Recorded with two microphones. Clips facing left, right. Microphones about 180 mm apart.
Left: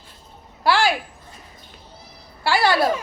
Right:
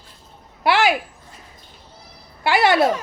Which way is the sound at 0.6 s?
20° right (ahead or behind).